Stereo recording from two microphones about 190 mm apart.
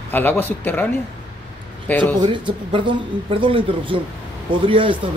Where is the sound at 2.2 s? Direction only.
25° right (ahead or behind).